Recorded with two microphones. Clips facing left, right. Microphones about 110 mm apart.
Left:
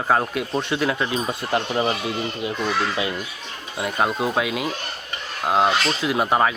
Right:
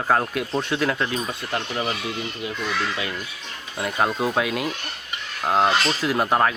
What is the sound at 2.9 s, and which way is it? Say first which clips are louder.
Speech: left 4 dB; 20° left (ahead or behind).